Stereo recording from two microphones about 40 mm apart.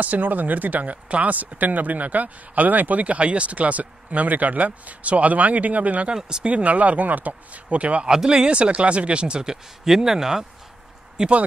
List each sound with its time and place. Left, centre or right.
0.0 s speech: right
6.0 s speech: right
6.5 s speech: right
8.1 s speech: centre
8.5 s speech: right